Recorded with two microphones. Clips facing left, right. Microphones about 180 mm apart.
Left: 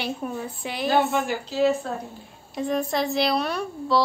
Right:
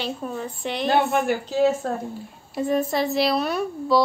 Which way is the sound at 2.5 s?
5° right (ahead or behind).